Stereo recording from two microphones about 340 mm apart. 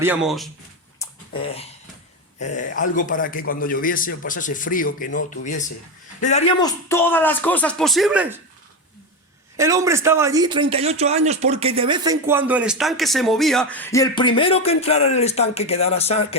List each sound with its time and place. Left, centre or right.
0.0 s speech: centre
0.9 s dog: centre
2.4 s a man's voice: left; by 8.4 s centre
9.6 s speech: centre